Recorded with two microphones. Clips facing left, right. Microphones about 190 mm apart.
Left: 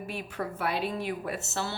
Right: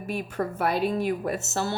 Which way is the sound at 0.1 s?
45° right (ahead or behind).